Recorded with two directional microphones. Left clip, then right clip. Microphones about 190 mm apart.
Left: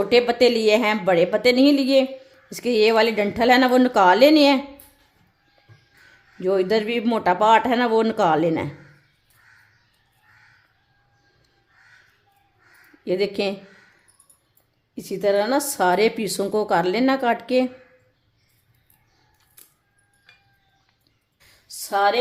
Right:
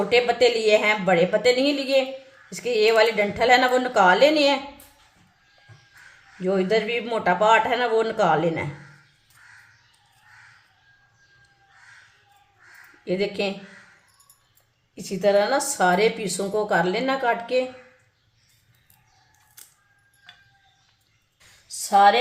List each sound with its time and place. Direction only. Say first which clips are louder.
0.1 s a woman's voice: left 2 dB; 50° left (ahead or behind)
6.4 s a woman's voice: left 2 dB; 45° left (ahead or behind)
13.1 s a woman's voice: left 2 dB; 45° left (ahead or behind)
14.9 s a woman's voice: right 1 dB; 40° left (ahead or behind)
21.8 s speech: right 4 dB; 40° left (ahead or behind)